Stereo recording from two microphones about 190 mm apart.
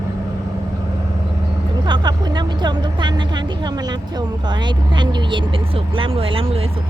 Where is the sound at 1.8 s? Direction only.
20° right (ahead or behind).